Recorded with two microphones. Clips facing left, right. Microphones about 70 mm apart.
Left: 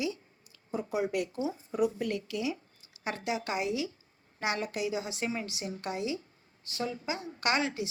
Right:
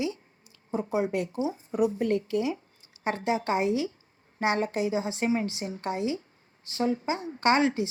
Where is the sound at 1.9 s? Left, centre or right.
Right.